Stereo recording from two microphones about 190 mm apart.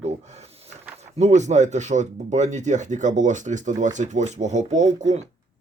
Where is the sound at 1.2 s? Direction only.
40° right (ahead or behind).